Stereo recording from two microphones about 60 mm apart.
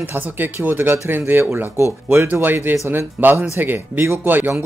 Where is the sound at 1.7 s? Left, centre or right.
Right.